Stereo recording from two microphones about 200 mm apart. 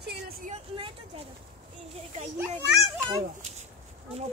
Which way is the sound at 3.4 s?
35° right (ahead or behind).